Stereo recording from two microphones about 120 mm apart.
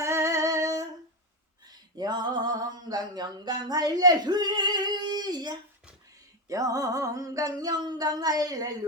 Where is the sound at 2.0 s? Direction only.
40° right (ahead or behind).